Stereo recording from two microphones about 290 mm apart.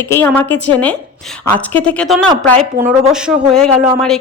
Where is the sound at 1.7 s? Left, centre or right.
Centre.